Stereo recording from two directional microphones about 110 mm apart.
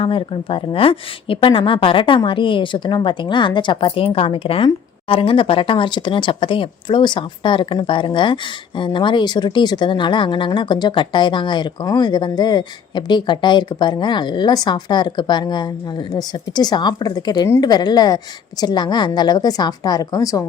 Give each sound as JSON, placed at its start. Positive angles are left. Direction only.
{"t": 0.0, "sound": "a woman's voice", "side_deg": 55}